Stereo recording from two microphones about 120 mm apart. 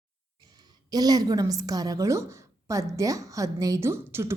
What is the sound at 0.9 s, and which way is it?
A woman's voice, 35° right (ahead or behind).